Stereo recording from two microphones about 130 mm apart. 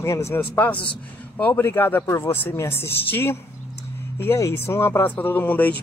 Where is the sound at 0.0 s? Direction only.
20° left (ahead or behind).